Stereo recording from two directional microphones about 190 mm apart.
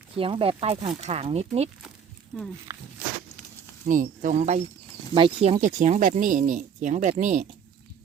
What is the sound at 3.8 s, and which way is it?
Speech, 45° right (ahead or behind).